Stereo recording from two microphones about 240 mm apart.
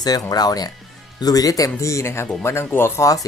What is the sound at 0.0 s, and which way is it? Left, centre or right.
Speech, centre.